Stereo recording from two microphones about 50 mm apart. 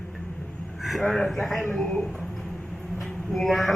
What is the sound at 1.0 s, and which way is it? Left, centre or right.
Speech, centre.